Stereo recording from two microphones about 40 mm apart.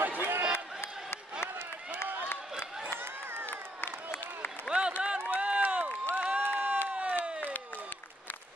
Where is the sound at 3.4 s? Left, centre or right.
Left.